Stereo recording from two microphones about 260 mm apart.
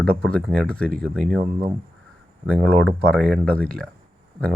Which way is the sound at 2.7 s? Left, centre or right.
Centre.